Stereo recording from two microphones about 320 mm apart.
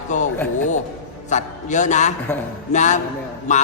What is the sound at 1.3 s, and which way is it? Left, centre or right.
A man's voice, left.